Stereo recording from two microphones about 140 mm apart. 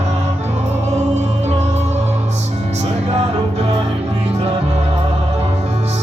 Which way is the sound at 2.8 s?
50° right (ahead or behind).